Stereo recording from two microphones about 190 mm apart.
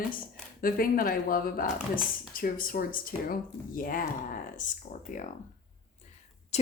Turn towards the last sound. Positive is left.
turn(degrees=35)  # may be behind; listen again after turning